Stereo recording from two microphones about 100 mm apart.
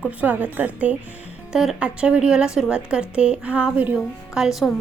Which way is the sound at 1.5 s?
5° right (ahead or behind).